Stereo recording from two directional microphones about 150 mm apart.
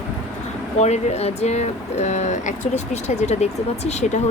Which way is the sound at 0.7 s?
50° left (ahead or behind).